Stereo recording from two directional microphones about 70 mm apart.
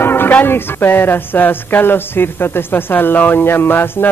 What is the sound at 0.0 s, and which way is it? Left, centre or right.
Speech, left.